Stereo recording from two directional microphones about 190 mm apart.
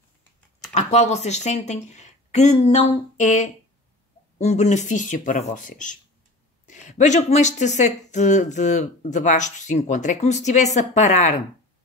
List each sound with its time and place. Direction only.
0.7 s speech: 35° left (ahead or behind)